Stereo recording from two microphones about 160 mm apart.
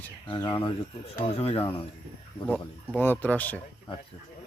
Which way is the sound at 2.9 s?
10° left (ahead or behind).